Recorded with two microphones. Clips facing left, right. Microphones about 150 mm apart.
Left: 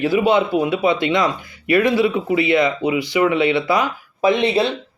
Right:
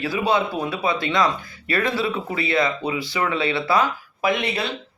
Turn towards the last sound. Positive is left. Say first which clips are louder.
# left 7 dB
turn(degrees=20)  # may be behind; listen again after turning